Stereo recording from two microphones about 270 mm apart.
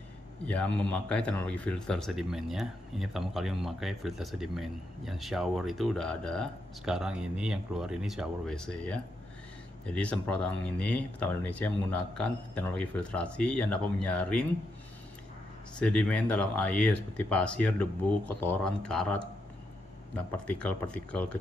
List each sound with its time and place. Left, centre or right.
0.5 s speech: centre
15.8 s speech: centre